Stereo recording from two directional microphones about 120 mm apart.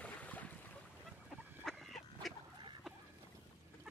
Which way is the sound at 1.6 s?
5° left (ahead or behind).